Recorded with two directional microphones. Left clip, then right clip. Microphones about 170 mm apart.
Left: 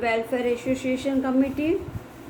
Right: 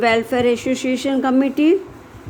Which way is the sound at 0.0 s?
55° right (ahead or behind).